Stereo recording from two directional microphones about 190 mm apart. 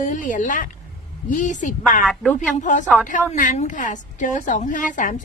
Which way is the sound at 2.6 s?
40° left (ahead or behind).